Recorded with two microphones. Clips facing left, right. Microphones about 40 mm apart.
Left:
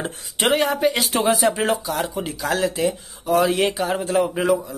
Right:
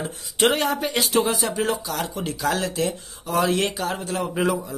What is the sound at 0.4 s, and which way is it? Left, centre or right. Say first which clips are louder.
Speech: left 2 dB; centre.